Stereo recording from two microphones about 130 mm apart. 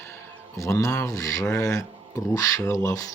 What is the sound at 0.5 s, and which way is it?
Speech, 25° left (ahead or behind).